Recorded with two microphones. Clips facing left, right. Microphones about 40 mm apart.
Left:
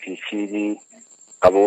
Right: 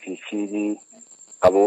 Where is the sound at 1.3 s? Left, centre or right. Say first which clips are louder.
Left 2 dB; left.